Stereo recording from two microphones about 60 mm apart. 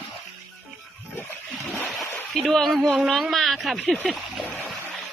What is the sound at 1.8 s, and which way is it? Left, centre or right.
Splash, centre.